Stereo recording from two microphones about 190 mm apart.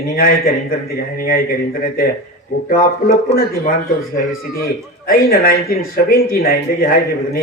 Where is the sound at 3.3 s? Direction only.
50° left (ahead or behind).